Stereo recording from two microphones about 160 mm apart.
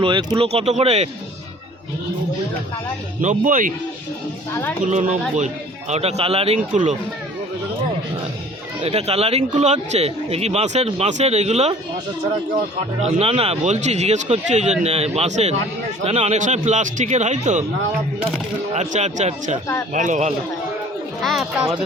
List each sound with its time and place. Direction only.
0.0 s speech: 30° right (ahead or behind)
0.4 s a man's voice: 40° right (ahead or behind)
3.2 s speech: 55° right (ahead or behind)
4.9 s a man's voice: 50° right (ahead or behind)
5.9 s speech: 40° right (ahead or behind)
8.8 s speech: 40° right (ahead or behind)
13.1 s a man's voice: 40° right (ahead or behind)
18.7 s a man's voice: 45° right (ahead or behind)
21.2 s speech: centre (ahead or behind)
21.6 s speech: 20° right (ahead or behind)